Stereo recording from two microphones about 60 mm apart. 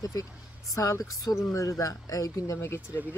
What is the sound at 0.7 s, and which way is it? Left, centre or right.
Speech, left.